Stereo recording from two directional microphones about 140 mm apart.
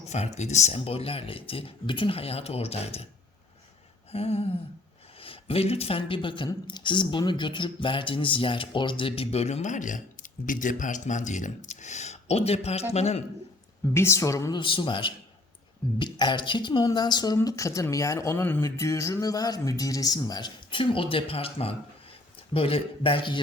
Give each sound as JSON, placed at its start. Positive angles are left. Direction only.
{"t": 0.0, "sound": "speech", "side_deg": 50}
{"t": 4.1, "sound": "speech", "side_deg": 45}
{"t": 13.9, "sound": "speech", "side_deg": 20}
{"t": 14.5, "sound": "speech", "side_deg": 35}